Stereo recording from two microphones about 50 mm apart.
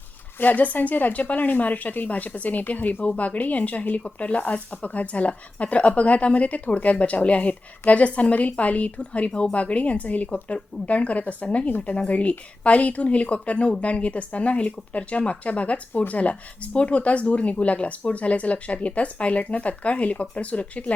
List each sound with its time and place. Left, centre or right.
0.3 s speech: left